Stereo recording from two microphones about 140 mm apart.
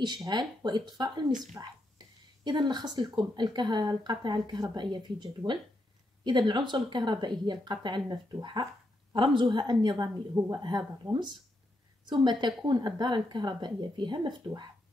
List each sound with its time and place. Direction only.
0.0 s a woman's voice: 30° right (ahead or behind)